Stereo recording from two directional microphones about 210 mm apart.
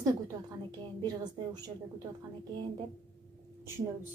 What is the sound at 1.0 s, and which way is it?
Speech, 20° right (ahead or behind).